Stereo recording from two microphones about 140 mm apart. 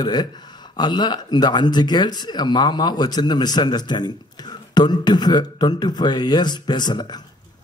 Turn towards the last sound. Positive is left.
turn(degrees=30)  # may be behind; listen again after turning